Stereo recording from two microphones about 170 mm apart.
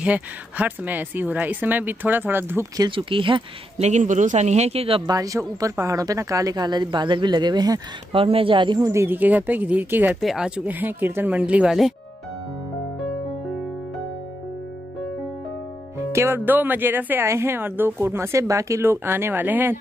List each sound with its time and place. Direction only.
0.0 s speech: 10° right (ahead or behind)
2.9 s speech: 30° right (ahead or behind)
5.1 s speech: 20° right (ahead or behind)
16.0 s speech: 15° right (ahead or behind)